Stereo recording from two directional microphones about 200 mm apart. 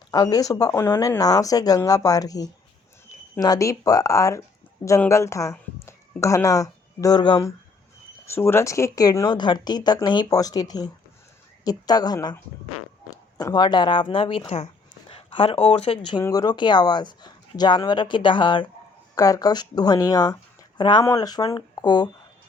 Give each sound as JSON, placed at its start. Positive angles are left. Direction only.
{"t": 0.1, "sound": "speech", "side_deg": 20}